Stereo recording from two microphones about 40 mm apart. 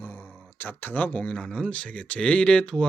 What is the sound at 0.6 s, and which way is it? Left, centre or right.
Speech, left.